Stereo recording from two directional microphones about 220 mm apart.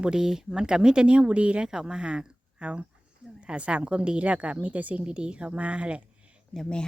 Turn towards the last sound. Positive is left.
turn(degrees=0)  # may be behind; listen again after turning